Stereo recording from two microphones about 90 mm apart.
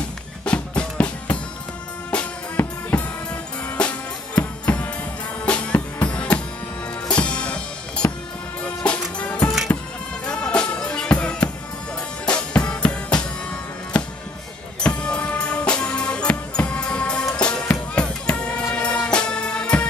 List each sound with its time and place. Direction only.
0.5 s music: 15° left (ahead or behind)
14.8 s music: 10° left (ahead or behind)